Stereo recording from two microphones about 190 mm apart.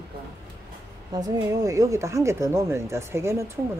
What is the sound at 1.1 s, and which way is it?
Speech, 20° right (ahead or behind).